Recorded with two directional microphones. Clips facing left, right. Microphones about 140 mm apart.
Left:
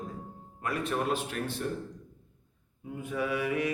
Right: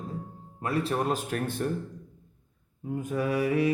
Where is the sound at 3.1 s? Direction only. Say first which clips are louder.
Right 3 dB; 40° right (ahead or behind).